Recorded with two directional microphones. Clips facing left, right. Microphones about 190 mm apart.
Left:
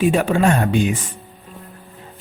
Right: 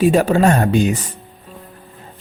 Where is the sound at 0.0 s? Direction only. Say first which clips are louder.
Right 3 dB; 40° right (ahead or behind).